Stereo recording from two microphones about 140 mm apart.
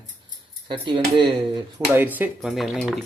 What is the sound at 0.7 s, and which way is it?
Speech, 35° right (ahead or behind).